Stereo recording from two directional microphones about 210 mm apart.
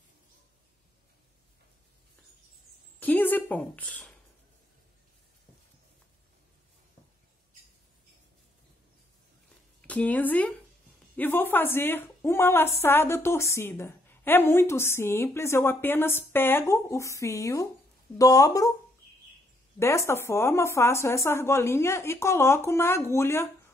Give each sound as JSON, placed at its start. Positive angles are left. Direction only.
{"t": 3.0, "sound": "a sound", "side_deg": 10}
{"t": 9.8, "sound": "a woman's voice", "side_deg": 5}
{"t": 19.8, "sound": "a woman's voice", "side_deg": 15}